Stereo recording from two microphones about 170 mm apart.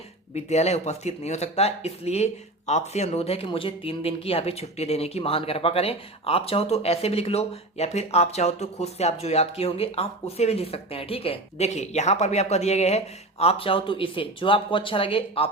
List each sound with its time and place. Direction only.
0.3 s speech: 40° left (ahead or behind)